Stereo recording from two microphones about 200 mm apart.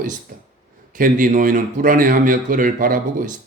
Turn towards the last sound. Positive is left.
turn(degrees=-45)  # may be behind; listen again after turning